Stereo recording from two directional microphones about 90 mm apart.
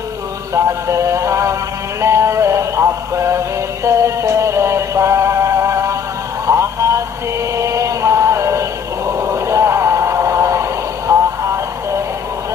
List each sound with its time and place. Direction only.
0.7 s music: 35° right (ahead or behind)
6.4 s a sound: 30° right (ahead or behind)
7.5 s chant: 35° right (ahead or behind)